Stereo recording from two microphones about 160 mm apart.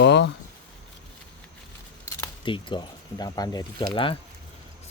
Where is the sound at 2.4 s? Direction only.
30° left (ahead or behind).